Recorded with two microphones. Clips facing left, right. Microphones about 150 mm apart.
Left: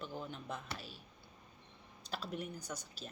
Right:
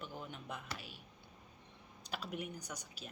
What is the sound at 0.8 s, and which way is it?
Speech, 40° left (ahead or behind).